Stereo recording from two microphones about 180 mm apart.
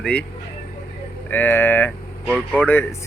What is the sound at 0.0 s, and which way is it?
Speech, 5° left (ahead or behind).